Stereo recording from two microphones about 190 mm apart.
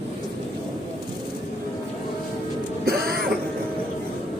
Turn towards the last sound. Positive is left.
turn(degrees=-55)  # may be behind; listen again after turning